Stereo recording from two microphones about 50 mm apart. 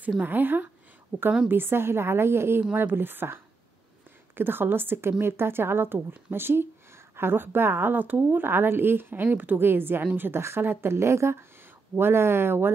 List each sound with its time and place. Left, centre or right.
0.2 s a woman's voice: right
2.7 s a woman's voice: right
4.4 s a woman's voice: right
12.0 s a woman's voice: right